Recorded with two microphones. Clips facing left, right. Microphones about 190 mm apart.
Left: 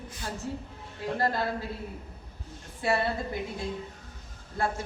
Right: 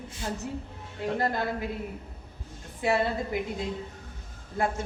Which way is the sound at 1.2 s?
20° right (ahead or behind).